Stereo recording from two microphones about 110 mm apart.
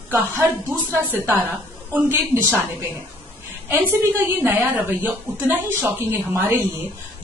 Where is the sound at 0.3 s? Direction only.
25° right (ahead or behind).